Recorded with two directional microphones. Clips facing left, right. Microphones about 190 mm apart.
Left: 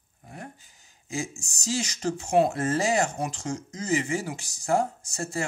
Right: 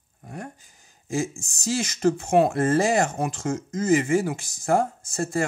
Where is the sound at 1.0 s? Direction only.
55° right (ahead or behind).